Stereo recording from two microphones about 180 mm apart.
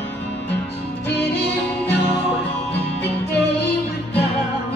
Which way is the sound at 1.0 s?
70° left (ahead or behind).